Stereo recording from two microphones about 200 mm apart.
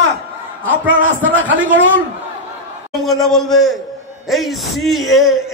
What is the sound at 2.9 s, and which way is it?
A man's voice, centre (ahead or behind).